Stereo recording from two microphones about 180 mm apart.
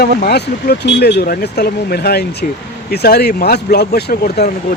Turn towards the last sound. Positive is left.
turn(degrees=65)  # may be behind; listen again after turning